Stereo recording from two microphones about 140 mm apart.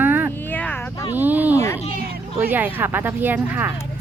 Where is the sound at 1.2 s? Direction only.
10° right (ahead or behind).